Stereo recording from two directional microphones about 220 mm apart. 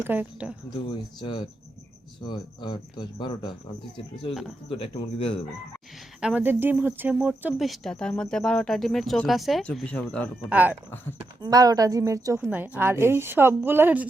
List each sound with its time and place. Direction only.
0.0 s a woman's voice: 10° right (ahead or behind)
1.2 s speech: 20° left (ahead or behind)
4.7 s speech: 25° left (ahead or behind)
6.1 s speech: 5° right (ahead or behind)
10.5 s a woman's voice: 5° right (ahead or behind)